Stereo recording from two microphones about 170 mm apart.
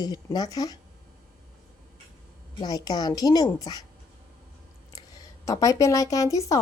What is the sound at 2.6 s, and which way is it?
Speech, 25° left (ahead or behind).